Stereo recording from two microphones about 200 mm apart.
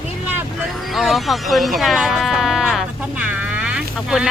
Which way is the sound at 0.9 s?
Centre (ahead or behind).